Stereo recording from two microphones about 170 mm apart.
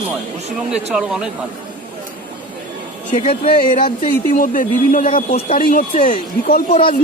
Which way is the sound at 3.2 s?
35° left (ahead or behind).